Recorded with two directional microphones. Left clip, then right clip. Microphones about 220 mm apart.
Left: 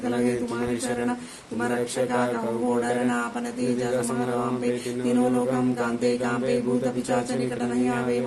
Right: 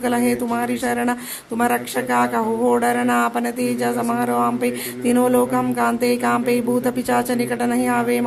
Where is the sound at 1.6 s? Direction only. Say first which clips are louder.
Right 5 dB; 45° right (ahead or behind).